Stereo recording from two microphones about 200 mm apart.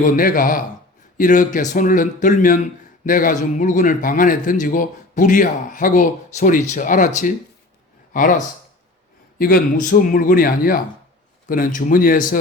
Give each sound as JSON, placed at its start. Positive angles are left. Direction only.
{"t": 0.0, "sound": "a man's voice", "side_deg": 45}
{"t": 9.4, "sound": "speech", "side_deg": 45}